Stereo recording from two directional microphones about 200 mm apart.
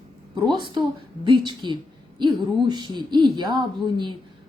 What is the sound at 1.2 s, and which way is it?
A woman's voice, 25° right (ahead or behind).